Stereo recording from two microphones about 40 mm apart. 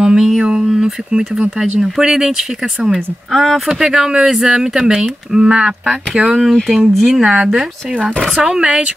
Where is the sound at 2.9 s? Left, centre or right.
Centre.